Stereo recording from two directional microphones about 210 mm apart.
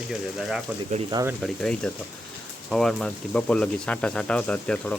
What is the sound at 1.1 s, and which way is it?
Speech, 15° right (ahead or behind).